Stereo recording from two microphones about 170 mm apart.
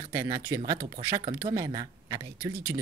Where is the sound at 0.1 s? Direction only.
20° right (ahead or behind).